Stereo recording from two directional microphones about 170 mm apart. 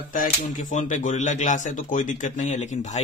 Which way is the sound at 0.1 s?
50° left (ahead or behind).